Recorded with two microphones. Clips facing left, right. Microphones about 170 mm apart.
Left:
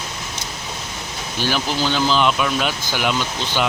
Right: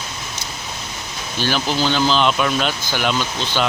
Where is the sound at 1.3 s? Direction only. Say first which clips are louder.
Right 1 dB; 10° left (ahead or behind).